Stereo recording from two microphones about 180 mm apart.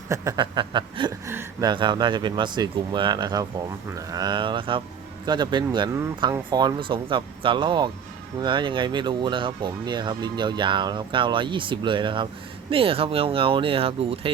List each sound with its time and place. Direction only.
0.1 s speech: 20° right (ahead or behind)
1.3 s speech: 15° right (ahead or behind)
1.7 s speech: 25° right (ahead or behind)